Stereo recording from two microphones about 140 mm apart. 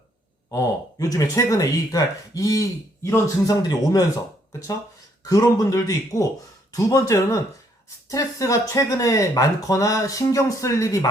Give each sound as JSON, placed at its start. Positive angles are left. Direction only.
{"t": 0.5, "sound": "speech", "side_deg": 25}
{"t": 5.2, "sound": "speech", "side_deg": 25}